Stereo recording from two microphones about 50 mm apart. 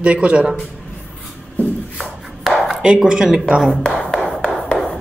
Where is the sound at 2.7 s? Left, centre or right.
Centre.